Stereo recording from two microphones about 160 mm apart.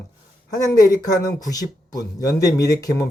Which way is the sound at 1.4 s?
20° left (ahead or behind).